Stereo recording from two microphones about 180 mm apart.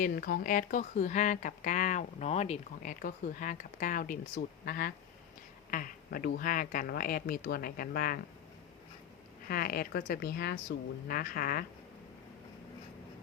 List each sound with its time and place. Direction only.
0.0 s speech: 55° left (ahead or behind)
9.5 s speech: 55° left (ahead or behind)